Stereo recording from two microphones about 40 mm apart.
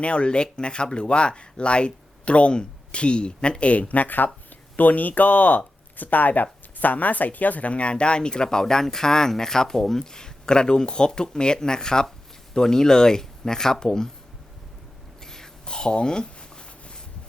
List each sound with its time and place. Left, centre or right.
0.0 s speech: left; by 10.0 s centre
10.0 s speech: centre
15.2 s a sound: centre